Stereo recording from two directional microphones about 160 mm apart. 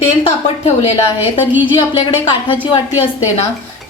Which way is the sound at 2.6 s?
35° left (ahead or behind).